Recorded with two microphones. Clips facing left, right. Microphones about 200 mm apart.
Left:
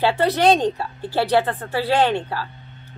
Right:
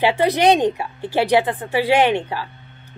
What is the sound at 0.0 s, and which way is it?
A woman's voice, 15° right (ahead or behind).